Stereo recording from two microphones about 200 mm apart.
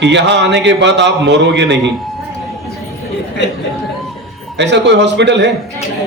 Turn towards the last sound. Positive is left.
turn(degrees=-60)  # may be behind; listen again after turning